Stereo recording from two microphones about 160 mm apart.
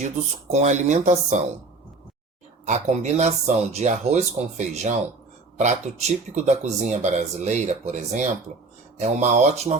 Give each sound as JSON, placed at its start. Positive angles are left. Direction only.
{"t": 0.0, "sound": "speech", "side_deg": -45}
{"t": 2.6, "sound": "speech", "side_deg": -45}